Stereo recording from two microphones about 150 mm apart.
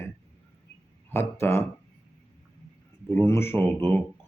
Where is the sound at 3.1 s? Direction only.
15° left (ahead or behind).